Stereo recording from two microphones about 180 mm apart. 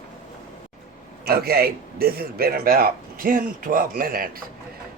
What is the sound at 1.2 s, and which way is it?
A man's voice, 60° right (ahead or behind).